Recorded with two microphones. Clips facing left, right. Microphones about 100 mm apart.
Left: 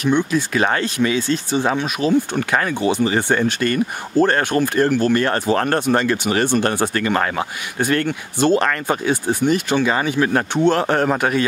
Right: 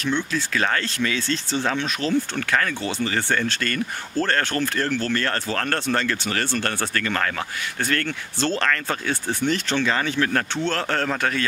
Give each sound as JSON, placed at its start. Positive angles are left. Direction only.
{"t": 0.0, "sound": "speech", "side_deg": 15}